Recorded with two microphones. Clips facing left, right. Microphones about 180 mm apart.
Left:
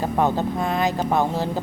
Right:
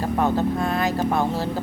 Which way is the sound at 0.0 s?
15° left (ahead or behind).